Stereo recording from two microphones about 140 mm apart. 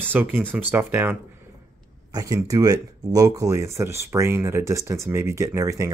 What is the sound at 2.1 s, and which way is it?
Speech, 25° right (ahead or behind).